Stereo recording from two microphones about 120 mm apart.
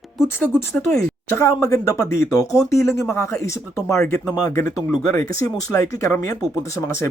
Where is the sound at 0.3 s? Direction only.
15° left (ahead or behind).